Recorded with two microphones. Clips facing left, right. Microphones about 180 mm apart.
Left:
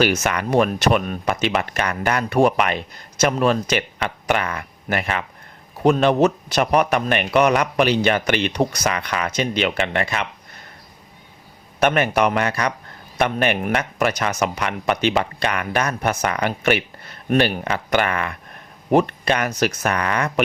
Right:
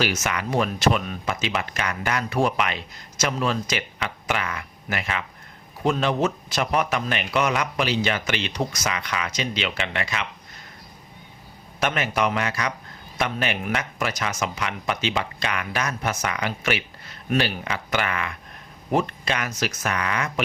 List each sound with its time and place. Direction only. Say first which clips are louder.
0.0 s speech: left 6 dB; 55° left (ahead or behind)
11.8 s speech: left 6 dB; 55° left (ahead or behind)